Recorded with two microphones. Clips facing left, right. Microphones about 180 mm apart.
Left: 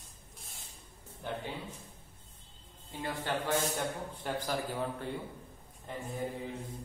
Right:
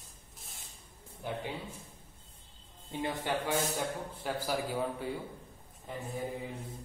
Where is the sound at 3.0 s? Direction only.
15° right (ahead or behind).